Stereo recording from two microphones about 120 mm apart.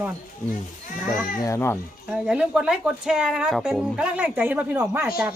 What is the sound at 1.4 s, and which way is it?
Speech, 20° left (ahead or behind).